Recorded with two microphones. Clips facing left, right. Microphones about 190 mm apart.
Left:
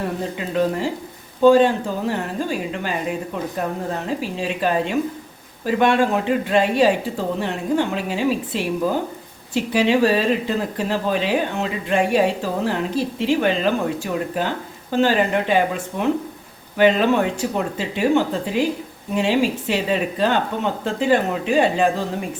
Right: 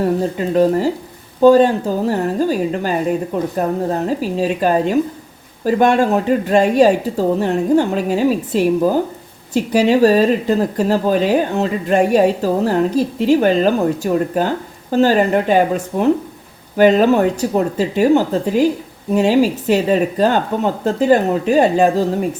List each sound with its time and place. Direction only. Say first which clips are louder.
0.0 s speech: right 8 dB; 40° right (ahead or behind)